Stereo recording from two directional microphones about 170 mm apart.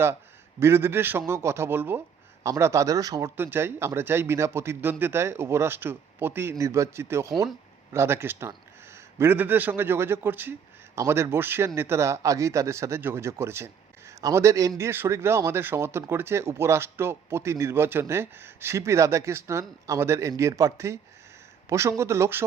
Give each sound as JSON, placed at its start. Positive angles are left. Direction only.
{"t": 0.6, "sound": "a man's voice", "side_deg": -15}